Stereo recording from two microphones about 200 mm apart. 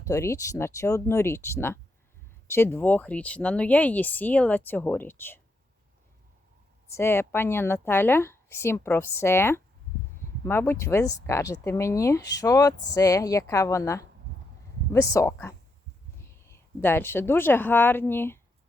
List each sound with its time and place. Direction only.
0.0 s speech: 15° left (ahead or behind)
6.9 s speech: 10° left (ahead or behind)